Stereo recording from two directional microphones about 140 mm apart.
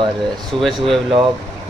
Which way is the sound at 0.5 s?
Centre (ahead or behind).